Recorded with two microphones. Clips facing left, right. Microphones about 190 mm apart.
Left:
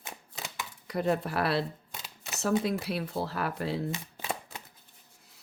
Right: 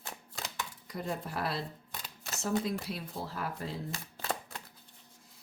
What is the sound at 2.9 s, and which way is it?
Speech, 75° left (ahead or behind).